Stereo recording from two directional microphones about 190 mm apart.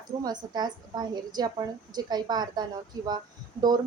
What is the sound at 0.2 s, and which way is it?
A woman's voice, 20° right (ahead or behind).